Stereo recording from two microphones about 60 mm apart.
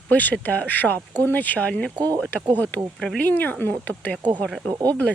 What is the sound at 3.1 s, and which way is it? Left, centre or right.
Speech, left.